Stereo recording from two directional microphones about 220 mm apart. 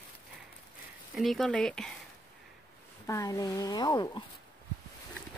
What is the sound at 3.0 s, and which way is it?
A woman's voice, 15° left (ahead or behind).